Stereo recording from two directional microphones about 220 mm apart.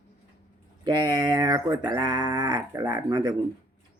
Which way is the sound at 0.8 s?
20° right (ahead or behind).